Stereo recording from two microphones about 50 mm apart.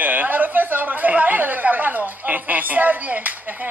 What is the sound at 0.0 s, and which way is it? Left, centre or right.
Speech, right.